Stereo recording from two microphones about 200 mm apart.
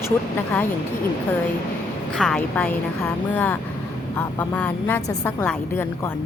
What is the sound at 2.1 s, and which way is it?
A woman's voice, centre (ahead or behind).